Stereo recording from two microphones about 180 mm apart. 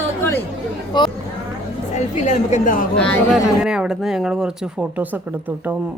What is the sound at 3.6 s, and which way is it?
Speech, 5° right (ahead or behind).